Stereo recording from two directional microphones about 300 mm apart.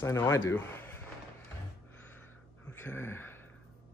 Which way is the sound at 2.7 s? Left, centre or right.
Centre.